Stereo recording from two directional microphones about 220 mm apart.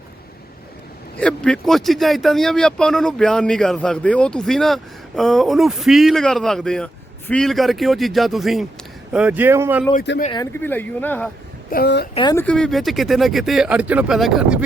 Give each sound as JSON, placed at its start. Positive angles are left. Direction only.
{"t": 1.2, "sound": "speech", "side_deg": 5}
{"t": 10.3, "sound": "speech", "side_deg": 10}
{"t": 11.7, "sound": "a woman's voice", "side_deg": 45}
{"t": 12.1, "sound": "speech", "side_deg": 20}
{"t": 12.5, "sound": "speech", "side_deg": 5}